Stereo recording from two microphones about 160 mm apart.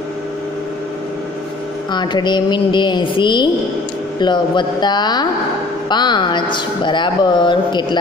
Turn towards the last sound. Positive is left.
turn(degrees=30)  # may be behind; listen again after turning